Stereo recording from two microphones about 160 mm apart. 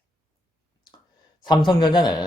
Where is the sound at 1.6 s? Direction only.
30° left (ahead or behind).